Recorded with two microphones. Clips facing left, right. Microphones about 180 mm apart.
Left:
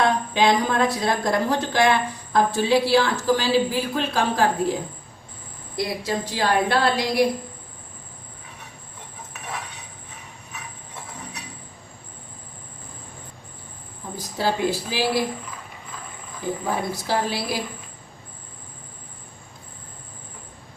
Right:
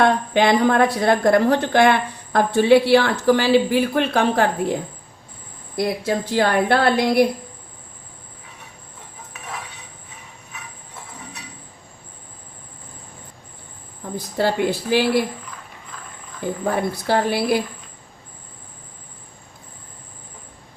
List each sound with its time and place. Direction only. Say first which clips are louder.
0.0 s a woman's voice: right 3 dB; 60° right (ahead or behind)
14.2 s a woman's voice: right 3 dB; 60° right (ahead or behind)
16.6 s a woman's voice: right 6 dB; 60° right (ahead or behind)